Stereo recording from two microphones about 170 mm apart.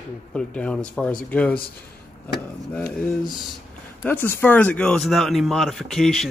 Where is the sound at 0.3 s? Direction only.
5° left (ahead or behind).